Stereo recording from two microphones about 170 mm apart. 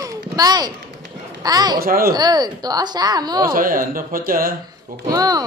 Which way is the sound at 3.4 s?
55° right (ahead or behind).